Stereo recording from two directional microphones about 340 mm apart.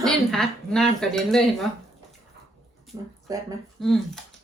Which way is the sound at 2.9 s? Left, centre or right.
Centre.